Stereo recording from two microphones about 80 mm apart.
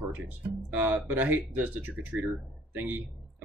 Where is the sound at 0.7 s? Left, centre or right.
Centre.